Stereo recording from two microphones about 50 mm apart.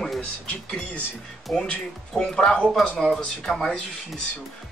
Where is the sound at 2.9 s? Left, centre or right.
Centre.